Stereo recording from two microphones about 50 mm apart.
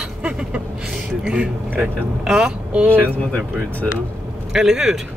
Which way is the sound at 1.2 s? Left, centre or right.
Centre.